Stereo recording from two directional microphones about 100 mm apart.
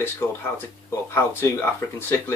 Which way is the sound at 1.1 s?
20° left (ahead or behind).